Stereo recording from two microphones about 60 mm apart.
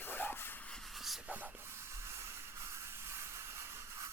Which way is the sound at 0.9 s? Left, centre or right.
Centre.